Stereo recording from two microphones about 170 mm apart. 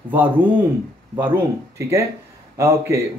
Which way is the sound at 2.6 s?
15° right (ahead or behind).